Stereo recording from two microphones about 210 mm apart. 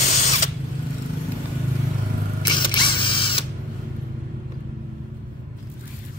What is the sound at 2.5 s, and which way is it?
Mechanisms, 20° left (ahead or behind).